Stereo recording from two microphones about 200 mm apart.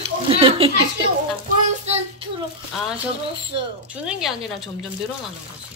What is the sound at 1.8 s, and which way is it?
Child singing, 30° right (ahead or behind).